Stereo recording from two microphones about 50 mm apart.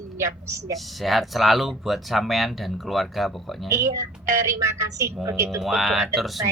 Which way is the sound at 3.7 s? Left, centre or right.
Right.